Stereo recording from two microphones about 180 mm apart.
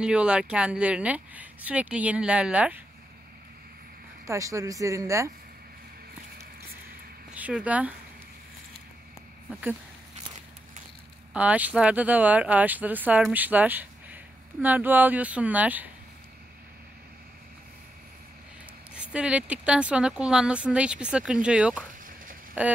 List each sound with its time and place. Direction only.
0.0 s speech: 5° right (ahead or behind)
4.3 s speech: 15° right (ahead or behind)
7.3 s speech: 10° right (ahead or behind)
9.5 s speech: 10° right (ahead or behind)
11.3 s speech: 10° right (ahead or behind)
18.9 s speech: 5° right (ahead or behind)